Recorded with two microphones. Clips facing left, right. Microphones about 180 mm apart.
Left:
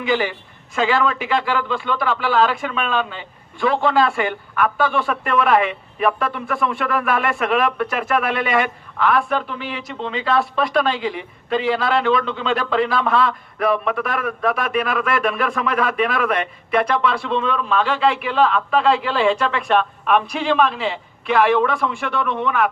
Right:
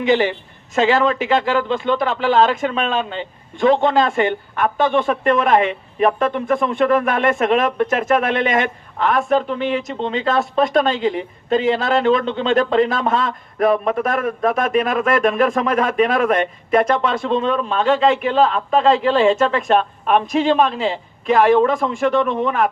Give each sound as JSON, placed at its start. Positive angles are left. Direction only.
{"t": 0.0, "sound": "speech", "side_deg": -45}